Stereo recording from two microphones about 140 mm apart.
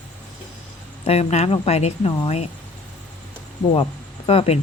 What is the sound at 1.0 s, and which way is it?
Speech, 45° left (ahead or behind).